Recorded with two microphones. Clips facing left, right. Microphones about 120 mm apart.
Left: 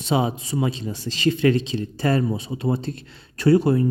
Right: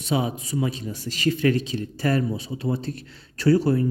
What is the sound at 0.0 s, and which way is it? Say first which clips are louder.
A man's voice: left 3 dB; 30° left (ahead or behind).